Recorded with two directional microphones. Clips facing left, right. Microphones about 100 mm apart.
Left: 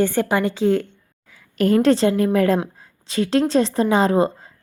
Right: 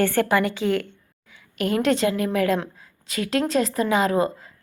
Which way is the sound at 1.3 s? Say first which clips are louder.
Left 7 dB; 35° left (ahead or behind).